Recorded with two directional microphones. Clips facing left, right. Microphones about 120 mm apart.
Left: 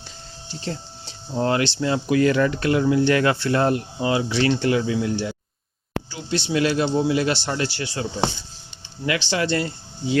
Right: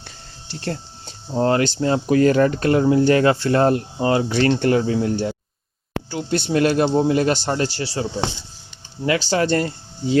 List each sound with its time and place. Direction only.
0.4 s a sound: 65° right (ahead or behind)
1.3 s speech: 35° right (ahead or behind)
6.1 s speech: 55° right (ahead or behind); by 8.0 s 35° right (ahead or behind)
9.0 s speech: 40° right (ahead or behind)